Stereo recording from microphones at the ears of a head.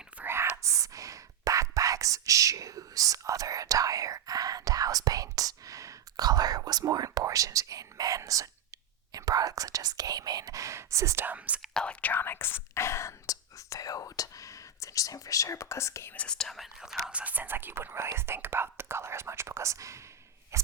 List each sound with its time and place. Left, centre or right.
0.3 s whispering: right
12.0 s whispering: left
16.6 s whispering: centre
17.7 s whispering: right